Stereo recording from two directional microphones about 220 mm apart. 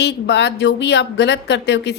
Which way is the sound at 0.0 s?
50° left (ahead or behind).